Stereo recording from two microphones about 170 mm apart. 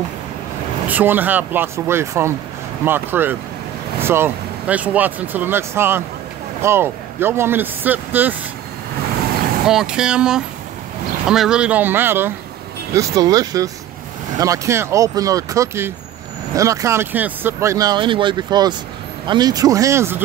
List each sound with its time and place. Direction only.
0.8 s speech: 10° right (ahead or behind)
9.7 s speech: 5° right (ahead or behind)